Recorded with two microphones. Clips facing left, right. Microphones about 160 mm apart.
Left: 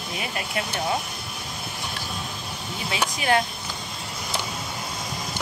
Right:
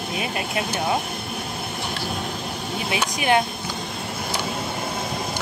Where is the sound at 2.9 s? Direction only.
20° right (ahead or behind).